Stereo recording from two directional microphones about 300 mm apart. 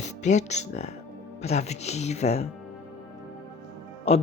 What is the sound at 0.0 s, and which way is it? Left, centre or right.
Speech, left.